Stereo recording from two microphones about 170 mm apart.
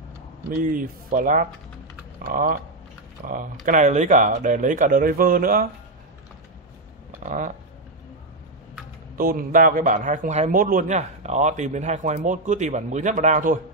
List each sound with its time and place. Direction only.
0.6 s speech: 55° right (ahead or behind)
7.2 s speech: 50° right (ahead or behind)
9.1 s speech: 55° right (ahead or behind)